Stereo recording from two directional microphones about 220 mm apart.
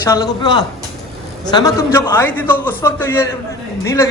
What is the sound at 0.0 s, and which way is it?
A man's voice, 15° left (ahead or behind).